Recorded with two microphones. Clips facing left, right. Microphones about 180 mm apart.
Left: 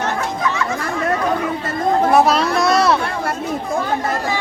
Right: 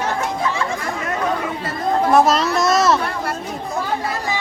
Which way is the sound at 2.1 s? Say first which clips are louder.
Right 1 dB; centre (ahead or behind).